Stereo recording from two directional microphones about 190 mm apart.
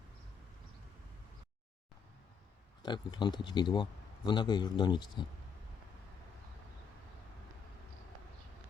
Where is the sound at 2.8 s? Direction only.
25° left (ahead or behind).